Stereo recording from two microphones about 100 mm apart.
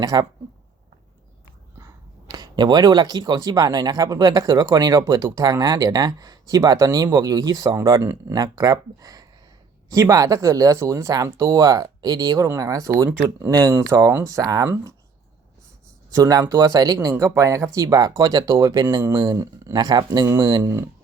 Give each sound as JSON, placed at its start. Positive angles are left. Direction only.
{"t": 0.0, "sound": "speech", "side_deg": -40}
{"t": 1.8, "sound": "speech", "side_deg": -40}
{"t": 13.1, "sound": "speech", "side_deg": -20}
{"t": 13.5, "sound": "speech", "side_deg": -35}
{"t": 16.1, "sound": "speech", "side_deg": -35}
{"t": 20.6, "sound": "speech", "side_deg": -30}